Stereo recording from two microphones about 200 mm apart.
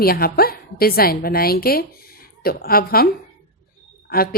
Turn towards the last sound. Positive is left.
turn(degrees=50)  # may be behind; listen again after turning